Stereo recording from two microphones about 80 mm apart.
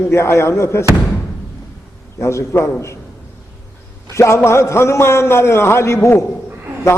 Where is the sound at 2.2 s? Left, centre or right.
Left.